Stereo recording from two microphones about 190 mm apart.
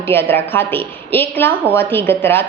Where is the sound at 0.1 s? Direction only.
10° left (ahead or behind).